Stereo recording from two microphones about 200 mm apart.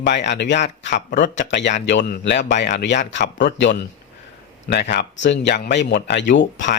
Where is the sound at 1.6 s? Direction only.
60° left (ahead or behind).